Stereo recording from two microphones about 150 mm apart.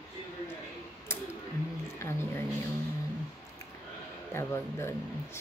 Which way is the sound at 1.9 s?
15° left (ahead or behind).